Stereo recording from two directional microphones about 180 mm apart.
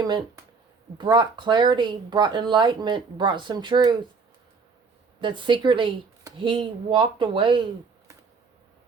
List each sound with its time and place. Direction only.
0.9 s speech: 25° right (ahead or behind)
5.2 s speech: 25° right (ahead or behind)